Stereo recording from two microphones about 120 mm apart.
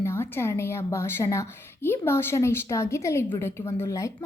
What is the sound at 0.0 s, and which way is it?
A woman's voice, 20° left (ahead or behind).